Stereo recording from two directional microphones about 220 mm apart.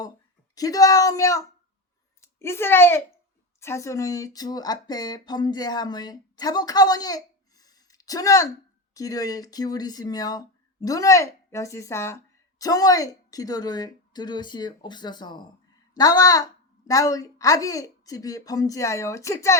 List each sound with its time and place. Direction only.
0.5 s speech: 15° left (ahead or behind)